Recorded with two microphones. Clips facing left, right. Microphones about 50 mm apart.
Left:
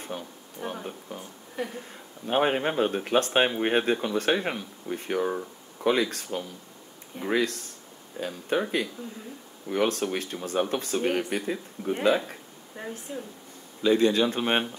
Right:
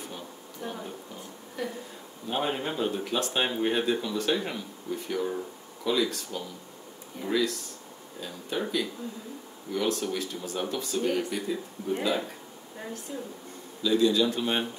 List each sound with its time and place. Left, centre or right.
0.6 s a sound: left
1.6 s speech: left
2.2 s speech: left
9.7 s speech: left
12.7 s speech: left
13.8 s speech: left